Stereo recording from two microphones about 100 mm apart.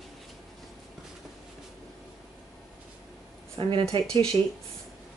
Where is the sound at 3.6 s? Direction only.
65° right (ahead or behind).